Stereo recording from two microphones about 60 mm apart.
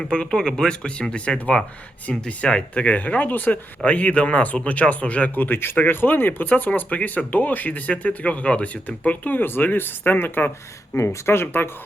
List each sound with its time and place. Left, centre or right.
0.0 s speech: centre; by 10.5 s left
10.9 s speech: left